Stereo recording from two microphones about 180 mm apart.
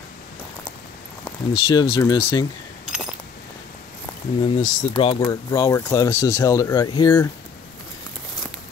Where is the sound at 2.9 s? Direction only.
5° right (ahead or behind).